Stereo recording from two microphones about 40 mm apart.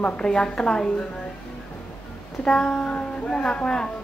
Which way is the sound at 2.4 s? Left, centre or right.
Left.